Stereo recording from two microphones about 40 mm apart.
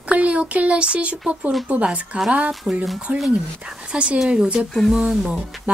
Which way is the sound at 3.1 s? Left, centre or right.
Right.